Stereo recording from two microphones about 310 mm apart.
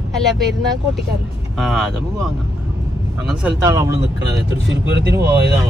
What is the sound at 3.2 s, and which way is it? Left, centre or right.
Speech, centre.